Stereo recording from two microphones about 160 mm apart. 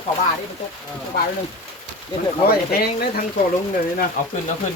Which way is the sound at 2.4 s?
70° left (ahead or behind).